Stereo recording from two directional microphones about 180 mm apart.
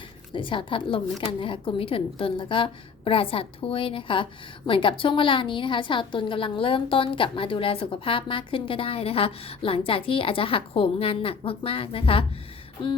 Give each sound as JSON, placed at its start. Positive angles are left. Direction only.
{"t": 0.3, "sound": "a woman's voice", "side_deg": 30}